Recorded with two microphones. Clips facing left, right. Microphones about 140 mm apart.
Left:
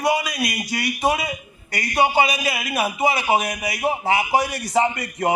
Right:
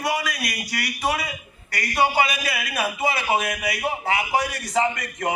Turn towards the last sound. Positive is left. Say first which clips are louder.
# left 3 dB
turn(degrees=30)  # may be behind; listen again after turning